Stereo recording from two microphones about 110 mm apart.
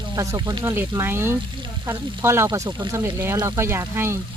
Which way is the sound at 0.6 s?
20° right (ahead or behind).